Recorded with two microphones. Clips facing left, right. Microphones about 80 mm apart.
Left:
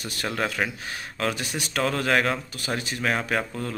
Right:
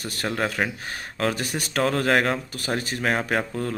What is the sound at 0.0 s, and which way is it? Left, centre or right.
Speech, right.